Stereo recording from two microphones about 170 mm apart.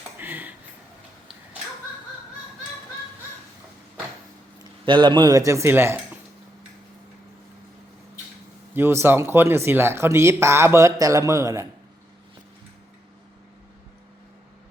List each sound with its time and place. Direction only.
0.2 s tick-tock: 10° right (ahead or behind)
4.9 s speech: 30° right (ahead or behind)
8.7 s speech: 15° right (ahead or behind)